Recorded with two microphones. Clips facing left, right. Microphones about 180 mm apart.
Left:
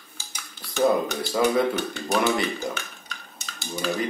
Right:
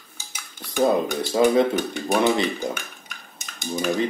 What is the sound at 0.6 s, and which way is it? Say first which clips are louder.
Speech: right 1 dB; 15° right (ahead or behind).